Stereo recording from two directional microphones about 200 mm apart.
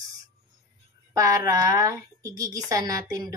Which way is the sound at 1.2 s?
15° right (ahead or behind).